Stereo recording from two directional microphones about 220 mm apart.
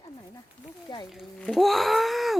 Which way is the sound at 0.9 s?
20° left (ahead or behind).